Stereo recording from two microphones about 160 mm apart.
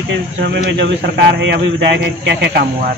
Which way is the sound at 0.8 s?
90° right.